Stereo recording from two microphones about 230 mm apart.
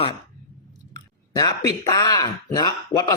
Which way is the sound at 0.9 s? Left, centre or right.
Centre.